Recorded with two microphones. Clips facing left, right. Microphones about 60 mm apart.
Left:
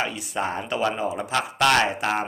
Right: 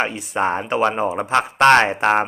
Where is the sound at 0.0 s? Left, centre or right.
Right.